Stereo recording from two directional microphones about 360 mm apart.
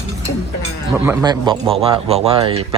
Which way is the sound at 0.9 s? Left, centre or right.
Centre.